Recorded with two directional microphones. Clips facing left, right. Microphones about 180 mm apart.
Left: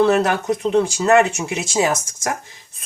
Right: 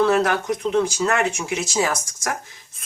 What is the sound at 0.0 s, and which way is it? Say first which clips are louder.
Speech: left 2 dB; 25° left (ahead or behind).